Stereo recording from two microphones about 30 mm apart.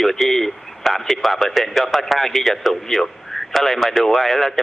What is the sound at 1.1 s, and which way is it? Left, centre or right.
A man's voice, centre.